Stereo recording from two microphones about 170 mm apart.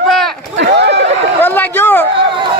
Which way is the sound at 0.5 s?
85° right.